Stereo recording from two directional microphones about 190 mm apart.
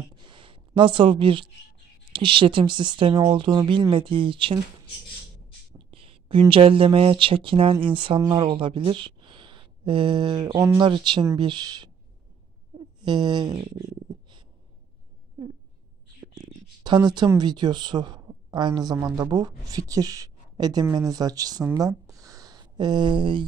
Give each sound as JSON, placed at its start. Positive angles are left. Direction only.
{"t": 0.1, "sound": "a sound", "side_deg": -25}
{"t": 2.1, "sound": "speech", "side_deg": -25}
{"t": 5.8, "sound": "speech", "side_deg": -30}
{"t": 16.3, "sound": "speech", "side_deg": -20}